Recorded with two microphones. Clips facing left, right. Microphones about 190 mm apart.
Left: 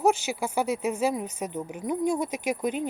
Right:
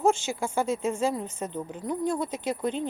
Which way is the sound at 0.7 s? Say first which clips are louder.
Left 1 dB; 15° left (ahead or behind).